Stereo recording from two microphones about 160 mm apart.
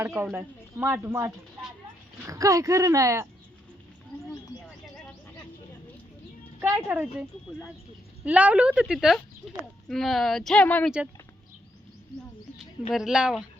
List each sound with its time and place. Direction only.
0.3 s a woman's voice: 15° right (ahead or behind)
6.6 s a woman's voice: 15° right (ahead or behind); by 10.9 s 10° left (ahead or behind)
12.9 s a woman's voice: 5° right (ahead or behind)